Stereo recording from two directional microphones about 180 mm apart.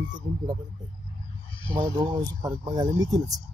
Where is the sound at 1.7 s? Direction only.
20° right (ahead or behind).